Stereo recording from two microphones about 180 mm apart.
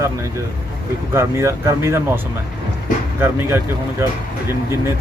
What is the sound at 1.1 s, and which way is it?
Speech, 15° right (ahead or behind).